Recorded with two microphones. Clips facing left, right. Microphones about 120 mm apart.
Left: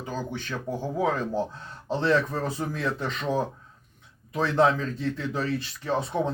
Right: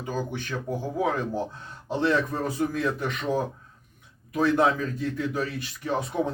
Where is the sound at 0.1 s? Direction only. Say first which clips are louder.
Right 3 dB; 15° right (ahead or behind).